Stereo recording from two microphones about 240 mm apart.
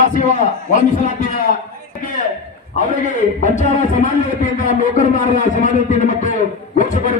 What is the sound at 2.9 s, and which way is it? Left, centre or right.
Speech, left.